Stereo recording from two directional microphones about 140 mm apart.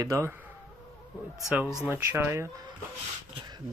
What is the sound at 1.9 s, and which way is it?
Speech, 15° right (ahead or behind).